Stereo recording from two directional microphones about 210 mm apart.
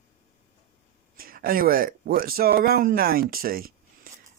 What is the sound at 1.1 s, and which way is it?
Speech, 45° right (ahead or behind).